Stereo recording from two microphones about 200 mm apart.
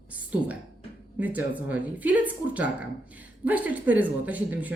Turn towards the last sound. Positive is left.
turn(degrees=-10)  # may be behind; listen again after turning